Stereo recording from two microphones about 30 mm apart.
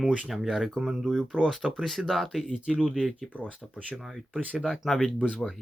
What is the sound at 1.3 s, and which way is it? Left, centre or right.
Speech, left.